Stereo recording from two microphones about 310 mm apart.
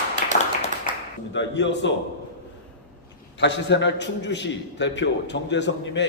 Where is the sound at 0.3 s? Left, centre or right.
Left.